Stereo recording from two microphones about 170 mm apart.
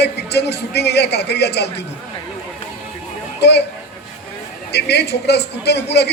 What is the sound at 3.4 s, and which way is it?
Speech, 80° left.